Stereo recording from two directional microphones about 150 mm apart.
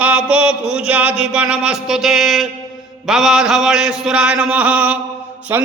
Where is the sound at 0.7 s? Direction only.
10° right (ahead or behind).